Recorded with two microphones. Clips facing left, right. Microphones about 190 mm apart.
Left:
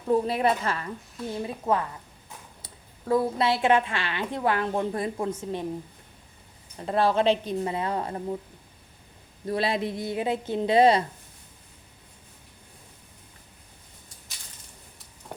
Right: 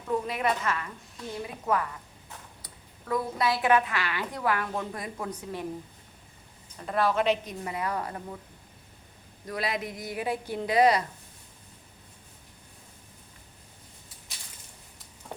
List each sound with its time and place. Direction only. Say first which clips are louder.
0.1 s a woman's voice: left 5 dB; 30° left (ahead or behind)
6.7 s a woman's voice: left 3 dB; 30° left (ahead or behind)
9.5 s a woman's voice: left 6 dB; 30° left (ahead or behind)